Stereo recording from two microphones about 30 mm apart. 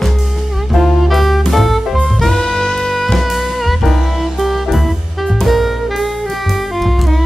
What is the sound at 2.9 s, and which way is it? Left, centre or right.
Music, centre.